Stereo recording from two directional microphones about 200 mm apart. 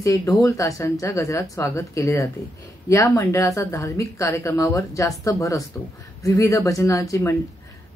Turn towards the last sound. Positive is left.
turn(degrees=15)  # may be behind; listen again after turning